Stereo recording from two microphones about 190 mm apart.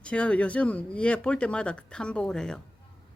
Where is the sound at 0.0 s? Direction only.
5° left (ahead or behind).